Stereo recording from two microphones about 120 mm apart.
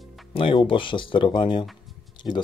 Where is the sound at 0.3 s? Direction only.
45° left (ahead or behind).